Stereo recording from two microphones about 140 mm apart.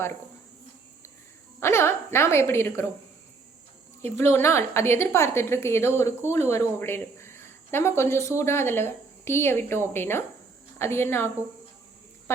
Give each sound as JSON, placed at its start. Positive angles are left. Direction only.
{"t": 1.5, "sound": "a woman's voice", "side_deg": 20}
{"t": 4.1, "sound": "a woman's voice", "side_deg": 20}